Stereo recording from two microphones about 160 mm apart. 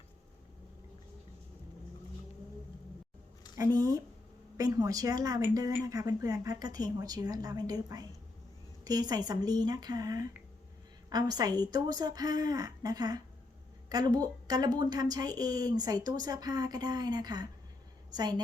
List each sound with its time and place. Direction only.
3.6 s a woman's voice: 20° right (ahead or behind)